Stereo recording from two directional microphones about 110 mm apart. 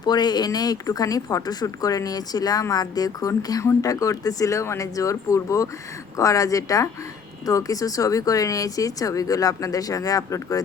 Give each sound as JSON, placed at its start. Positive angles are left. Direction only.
{"t": 0.0, "sound": "speech", "side_deg": 40}